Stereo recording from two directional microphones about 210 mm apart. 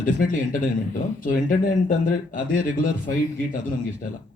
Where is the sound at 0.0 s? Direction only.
40° left (ahead or behind).